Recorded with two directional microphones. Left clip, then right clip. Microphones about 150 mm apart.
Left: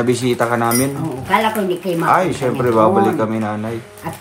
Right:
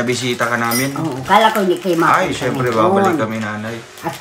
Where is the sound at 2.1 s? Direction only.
20° left (ahead or behind).